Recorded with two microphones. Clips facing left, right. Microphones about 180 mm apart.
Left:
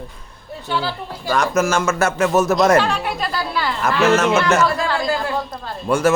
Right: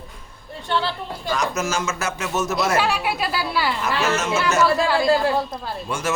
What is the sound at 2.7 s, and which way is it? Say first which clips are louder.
Speech: left 4 dB; 5° right (ahead or behind).